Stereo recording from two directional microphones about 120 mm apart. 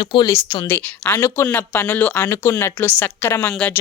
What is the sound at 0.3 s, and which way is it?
A woman's voice, 25° left (ahead or behind).